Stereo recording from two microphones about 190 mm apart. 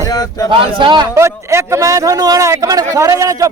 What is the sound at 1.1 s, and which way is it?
Speech, 15° right (ahead or behind).